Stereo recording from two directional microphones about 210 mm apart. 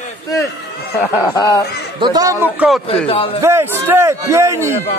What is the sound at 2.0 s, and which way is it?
Speech, 15° right (ahead or behind).